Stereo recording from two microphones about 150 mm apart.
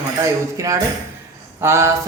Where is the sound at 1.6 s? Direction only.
20° right (ahead or behind).